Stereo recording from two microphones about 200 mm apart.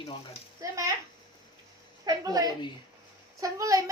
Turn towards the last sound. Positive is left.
turn(degrees=-15)  # may be behind; listen again after turning